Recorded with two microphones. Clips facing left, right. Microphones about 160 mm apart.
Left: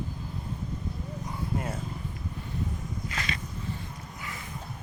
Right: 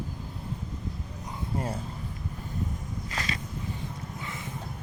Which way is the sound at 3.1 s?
35° right (ahead or behind).